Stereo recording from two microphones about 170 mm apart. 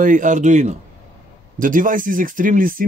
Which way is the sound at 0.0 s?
50° right (ahead or behind).